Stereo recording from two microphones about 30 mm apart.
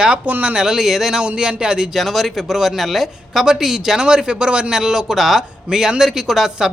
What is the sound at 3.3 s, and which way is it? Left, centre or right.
Speech, centre.